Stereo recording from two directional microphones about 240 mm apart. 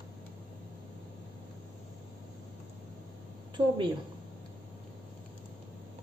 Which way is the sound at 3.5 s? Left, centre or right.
Centre.